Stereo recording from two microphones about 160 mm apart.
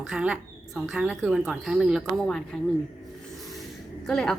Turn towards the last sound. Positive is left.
turn(degrees=5)  # may be behind; listen again after turning